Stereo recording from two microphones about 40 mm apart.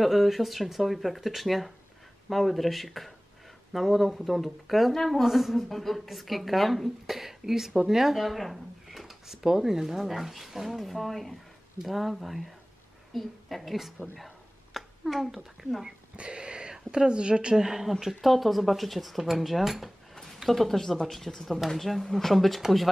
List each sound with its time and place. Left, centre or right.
0.0 s a woman's voice: centre
16.2 s a sound: right
16.7 s a woman's voice: centre
17.6 s a woman's voice: centre